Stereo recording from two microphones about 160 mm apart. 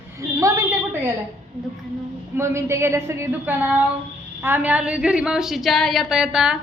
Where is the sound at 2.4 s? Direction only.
15° right (ahead or behind).